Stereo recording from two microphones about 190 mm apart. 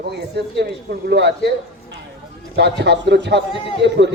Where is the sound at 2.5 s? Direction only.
60° right (ahead or behind).